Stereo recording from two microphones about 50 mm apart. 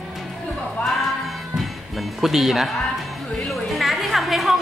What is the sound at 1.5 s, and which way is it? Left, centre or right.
Music, centre.